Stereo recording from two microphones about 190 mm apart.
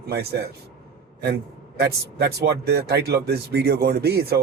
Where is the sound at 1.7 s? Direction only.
60° right (ahead or behind).